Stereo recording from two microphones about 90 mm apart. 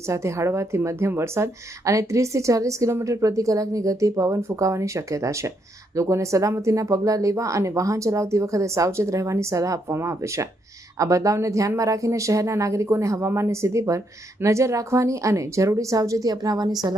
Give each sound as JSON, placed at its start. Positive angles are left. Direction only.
{"t": 0.1, "sound": "a woman's voice", "side_deg": -35}